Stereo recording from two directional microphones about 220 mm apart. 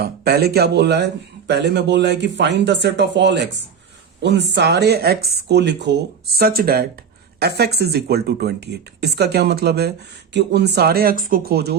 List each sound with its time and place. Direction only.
0.0 s a man's voice: 45° right (ahead or behind)